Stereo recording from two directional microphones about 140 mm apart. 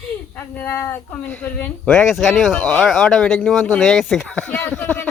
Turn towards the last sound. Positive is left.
turn(degrees=15)  # may be behind; listen again after turning